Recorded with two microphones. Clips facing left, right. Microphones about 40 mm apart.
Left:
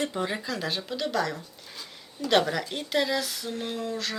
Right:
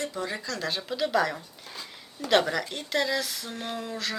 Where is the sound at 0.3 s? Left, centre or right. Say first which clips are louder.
Left 1 dB; centre.